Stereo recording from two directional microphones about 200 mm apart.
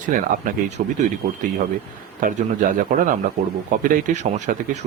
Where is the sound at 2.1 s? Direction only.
40° right (ahead or behind).